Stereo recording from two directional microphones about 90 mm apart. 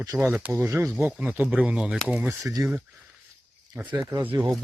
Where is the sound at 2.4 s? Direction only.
40° right (ahead or behind).